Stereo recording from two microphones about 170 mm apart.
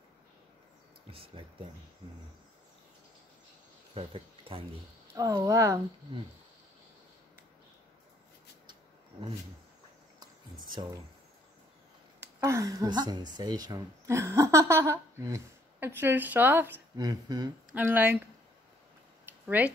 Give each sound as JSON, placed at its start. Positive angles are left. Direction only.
{"t": 1.1, "sound": "speech", "side_deg": -30}
{"t": 3.9, "sound": "speech", "side_deg": -35}
{"t": 5.1, "sound": "speech", "side_deg": -20}
{"t": 10.2, "sound": "a sound", "side_deg": -25}
{"t": 12.4, "sound": "speech", "side_deg": -20}
{"t": 16.9, "sound": "speech", "side_deg": -25}
{"t": 17.7, "sound": "speech", "side_deg": -10}
{"t": 19.4, "sound": "speech", "side_deg": -10}